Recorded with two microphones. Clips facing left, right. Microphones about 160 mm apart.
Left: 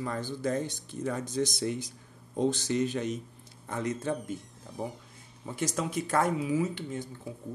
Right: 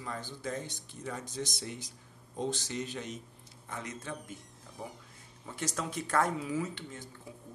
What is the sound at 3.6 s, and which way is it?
Speech, 40° left (ahead or behind).